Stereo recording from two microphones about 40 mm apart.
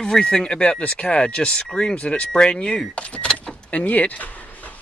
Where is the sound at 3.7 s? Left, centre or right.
Left.